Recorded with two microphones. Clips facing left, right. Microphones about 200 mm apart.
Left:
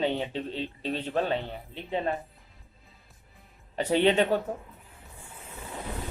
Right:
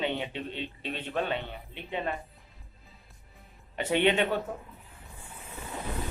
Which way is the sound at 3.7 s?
35° left (ahead or behind).